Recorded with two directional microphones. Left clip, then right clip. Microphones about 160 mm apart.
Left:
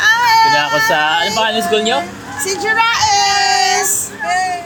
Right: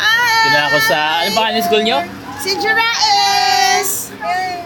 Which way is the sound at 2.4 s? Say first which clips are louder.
Even; centre (ahead or behind).